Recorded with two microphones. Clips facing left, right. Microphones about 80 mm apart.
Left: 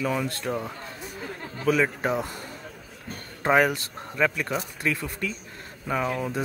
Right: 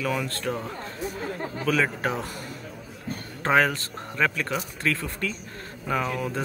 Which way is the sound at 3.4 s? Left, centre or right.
Centre.